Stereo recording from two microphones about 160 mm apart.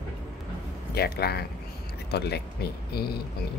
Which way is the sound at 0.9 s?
85° left.